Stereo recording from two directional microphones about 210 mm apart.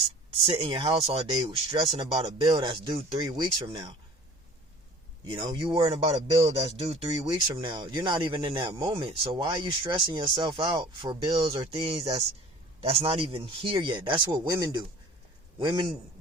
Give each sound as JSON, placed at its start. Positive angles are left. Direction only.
{"t": 0.4, "sound": "speech", "side_deg": -25}
{"t": 5.2, "sound": "speech", "side_deg": -20}
{"t": 7.2, "sound": "speech", "side_deg": -15}